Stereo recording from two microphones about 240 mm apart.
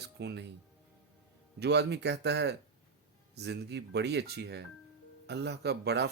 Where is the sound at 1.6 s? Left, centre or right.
Right.